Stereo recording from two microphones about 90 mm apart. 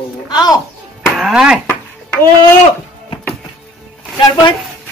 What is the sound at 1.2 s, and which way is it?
Speech, 5° right (ahead or behind).